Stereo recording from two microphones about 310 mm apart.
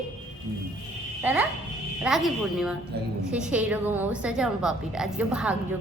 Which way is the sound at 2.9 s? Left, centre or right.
Right.